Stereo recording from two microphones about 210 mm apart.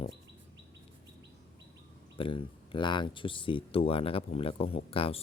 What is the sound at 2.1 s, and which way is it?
Speech, 25° left (ahead or behind).